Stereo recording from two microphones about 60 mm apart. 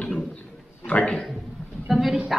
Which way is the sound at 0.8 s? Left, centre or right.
Centre.